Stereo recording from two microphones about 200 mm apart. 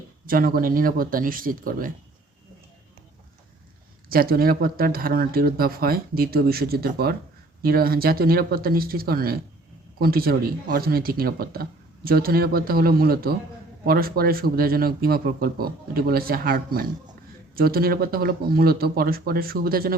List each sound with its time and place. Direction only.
0.3 s speech: 45° right (ahead or behind)
4.1 s speech: 50° right (ahead or behind)